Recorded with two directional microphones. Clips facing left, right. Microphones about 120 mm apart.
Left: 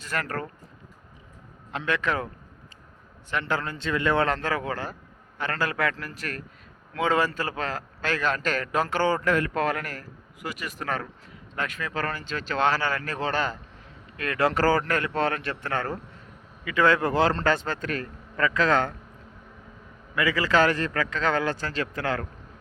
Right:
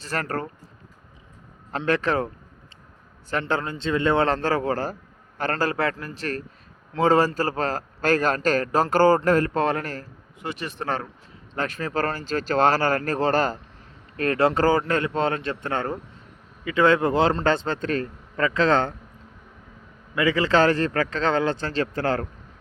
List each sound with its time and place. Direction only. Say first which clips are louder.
0.0 s a man's voice: right 3 dB; 35° right (ahead or behind)
1.7 s a man's voice: right 4 dB; 35° right (ahead or behind)
3.4 s a man's voice: right 3 dB; 20° right (ahead or behind)
20.1 s a man's voice: right 3 dB; 25° right (ahead or behind)